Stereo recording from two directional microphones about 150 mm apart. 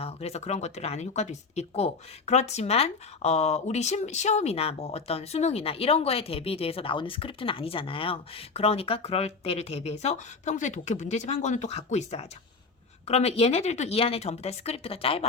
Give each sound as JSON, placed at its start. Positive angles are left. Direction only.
{"t": 0.0, "sound": "speech", "side_deg": 45}